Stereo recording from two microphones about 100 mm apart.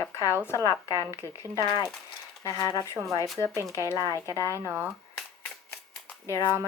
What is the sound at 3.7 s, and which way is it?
Speech, 30° left (ahead or behind).